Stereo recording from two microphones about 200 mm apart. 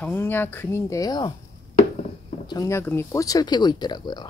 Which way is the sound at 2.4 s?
15° left (ahead or behind).